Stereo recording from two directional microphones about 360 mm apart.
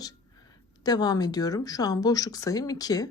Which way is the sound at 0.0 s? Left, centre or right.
Centre.